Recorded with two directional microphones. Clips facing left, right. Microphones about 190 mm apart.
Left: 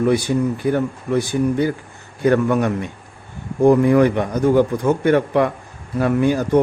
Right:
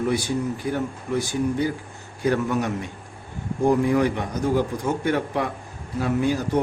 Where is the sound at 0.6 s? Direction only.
60° left (ahead or behind).